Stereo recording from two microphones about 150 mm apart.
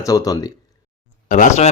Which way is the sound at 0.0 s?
25° left (ahead or behind).